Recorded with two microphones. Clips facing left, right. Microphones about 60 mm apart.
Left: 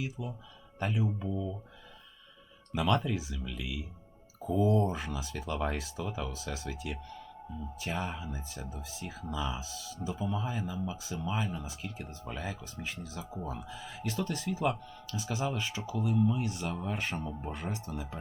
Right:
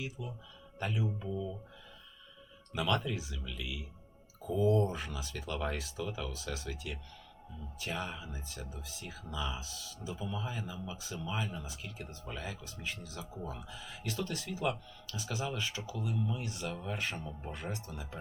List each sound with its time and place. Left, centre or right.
0.8 s speech: left
2.7 s speech: left
10.2 s speech: left